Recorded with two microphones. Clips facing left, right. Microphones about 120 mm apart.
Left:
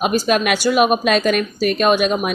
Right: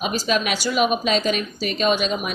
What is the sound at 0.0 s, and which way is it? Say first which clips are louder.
A woman's voice: left 5 dB; 55° left (ahead or behind).